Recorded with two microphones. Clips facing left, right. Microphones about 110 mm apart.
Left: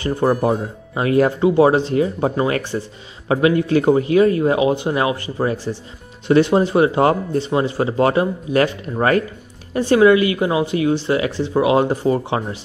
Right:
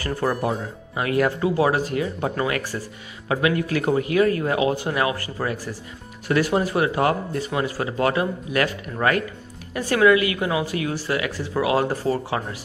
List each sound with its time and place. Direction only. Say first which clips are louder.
0.0 s speech: left 6 dB; 25° left (ahead or behind)